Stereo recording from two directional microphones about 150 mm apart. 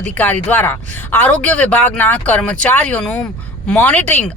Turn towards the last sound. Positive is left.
turn(degrees=10)  # may be behind; listen again after turning